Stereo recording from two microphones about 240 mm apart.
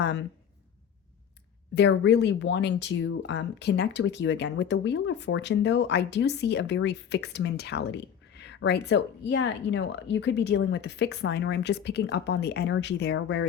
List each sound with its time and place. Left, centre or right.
0.0 s speech: left
1.7 s speech: left